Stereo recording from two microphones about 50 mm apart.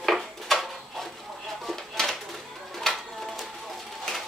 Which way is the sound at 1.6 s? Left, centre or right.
Centre.